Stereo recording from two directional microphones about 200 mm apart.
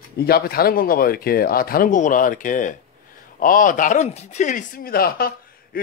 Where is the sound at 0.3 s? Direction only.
50° left (ahead or behind).